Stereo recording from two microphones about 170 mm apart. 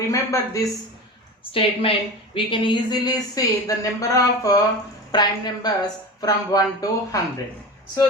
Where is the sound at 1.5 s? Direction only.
30° left (ahead or behind).